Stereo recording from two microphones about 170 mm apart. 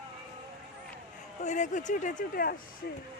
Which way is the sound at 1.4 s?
45° left (ahead or behind).